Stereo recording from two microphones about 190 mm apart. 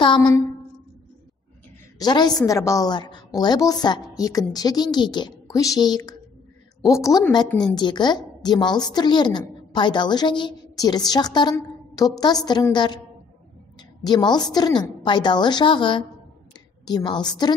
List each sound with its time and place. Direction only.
2.0 s a woman's voice: 20° left (ahead or behind)
7.4 s a woman's voice: 5° left (ahead or behind)
7.7 s a woman's voice: 25° left (ahead or behind)